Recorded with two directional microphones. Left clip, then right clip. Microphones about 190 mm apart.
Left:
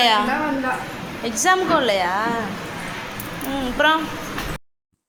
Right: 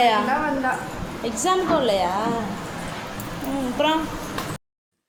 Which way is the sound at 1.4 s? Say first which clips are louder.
Left 3 dB; centre (ahead or behind).